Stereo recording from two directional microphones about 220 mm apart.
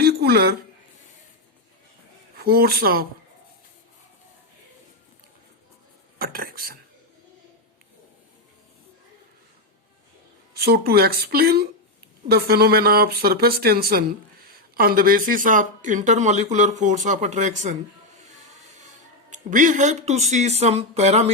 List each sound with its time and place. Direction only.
0.0 s a sound: 45° right (ahead or behind)
2.4 s speech: 45° right (ahead or behind)
6.1 s speech: 40° right (ahead or behind)
10.5 s speech: 45° right (ahead or behind)
18.2 s music: 30° right (ahead or behind)
19.3 s speech: 35° right (ahead or behind)